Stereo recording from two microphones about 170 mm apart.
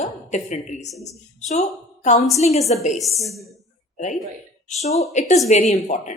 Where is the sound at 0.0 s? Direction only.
45° left (ahead or behind).